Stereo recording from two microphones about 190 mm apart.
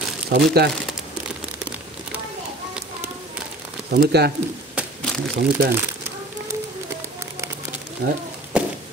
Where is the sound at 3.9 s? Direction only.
55° right (ahead or behind).